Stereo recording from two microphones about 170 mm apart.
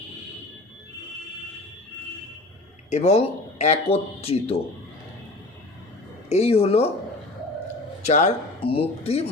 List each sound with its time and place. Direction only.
2.9 s speech: 40° left (ahead or behind)
6.2 s speech: 40° left (ahead or behind)
8.0 s speech: 45° left (ahead or behind)